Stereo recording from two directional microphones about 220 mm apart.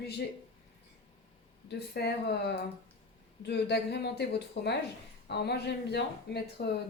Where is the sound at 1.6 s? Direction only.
50° left (ahead or behind).